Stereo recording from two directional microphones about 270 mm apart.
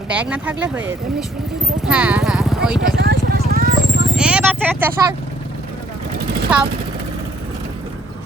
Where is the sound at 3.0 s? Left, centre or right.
Right.